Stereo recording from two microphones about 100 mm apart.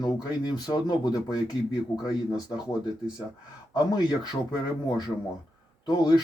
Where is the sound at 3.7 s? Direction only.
45° left (ahead or behind).